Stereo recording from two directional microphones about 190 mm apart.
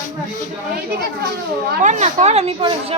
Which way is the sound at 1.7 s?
40° right (ahead or behind).